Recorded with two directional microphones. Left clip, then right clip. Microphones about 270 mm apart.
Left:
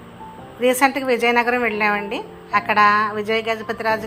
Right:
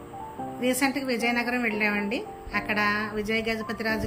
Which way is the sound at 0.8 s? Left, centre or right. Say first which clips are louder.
Left 9 dB; left.